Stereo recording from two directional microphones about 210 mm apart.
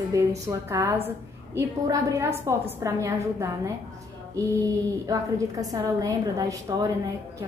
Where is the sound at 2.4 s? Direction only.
15° right (ahead or behind).